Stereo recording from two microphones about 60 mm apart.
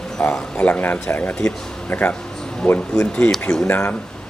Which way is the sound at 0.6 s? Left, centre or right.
Left.